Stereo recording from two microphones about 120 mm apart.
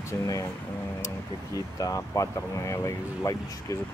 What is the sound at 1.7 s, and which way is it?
Speech, 30° left (ahead or behind).